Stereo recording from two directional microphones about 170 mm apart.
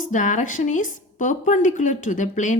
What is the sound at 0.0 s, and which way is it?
A woman's voice, 50° left (ahead or behind).